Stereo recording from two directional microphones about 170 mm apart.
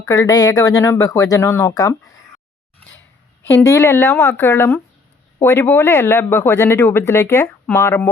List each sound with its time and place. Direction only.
0.0 s speech: 20° left (ahead or behind)
3.4 s speech: 15° left (ahead or behind)